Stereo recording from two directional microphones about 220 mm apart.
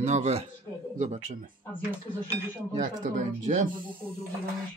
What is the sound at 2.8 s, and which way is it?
Speech, 35° right (ahead or behind).